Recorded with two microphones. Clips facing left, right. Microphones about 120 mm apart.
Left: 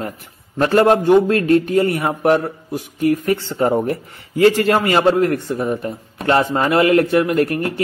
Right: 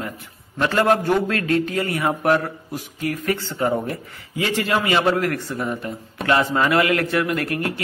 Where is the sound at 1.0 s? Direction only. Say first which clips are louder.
Left 8 dB; 20° left (ahead or behind).